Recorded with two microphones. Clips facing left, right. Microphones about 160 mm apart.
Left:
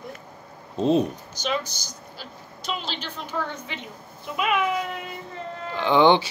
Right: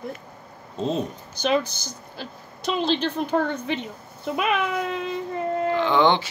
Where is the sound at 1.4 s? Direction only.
55° right (ahead or behind).